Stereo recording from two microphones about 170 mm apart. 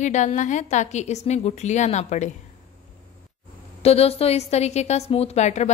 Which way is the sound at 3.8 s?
35° left (ahead or behind).